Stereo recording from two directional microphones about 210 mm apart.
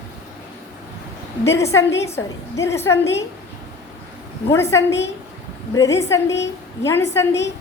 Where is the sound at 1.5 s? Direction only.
15° left (ahead or behind).